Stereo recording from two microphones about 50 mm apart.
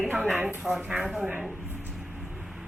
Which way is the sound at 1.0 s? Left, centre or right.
Centre.